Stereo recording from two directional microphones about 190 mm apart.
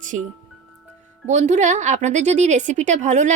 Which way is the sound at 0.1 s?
40° right (ahead or behind).